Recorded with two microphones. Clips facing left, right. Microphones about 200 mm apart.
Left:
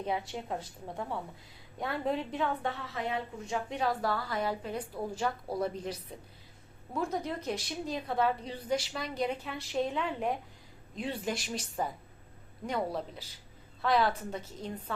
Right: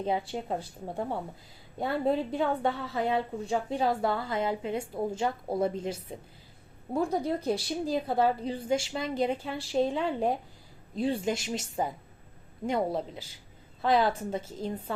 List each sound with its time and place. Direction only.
0.0 s a woman's voice: 30° right (ahead or behind)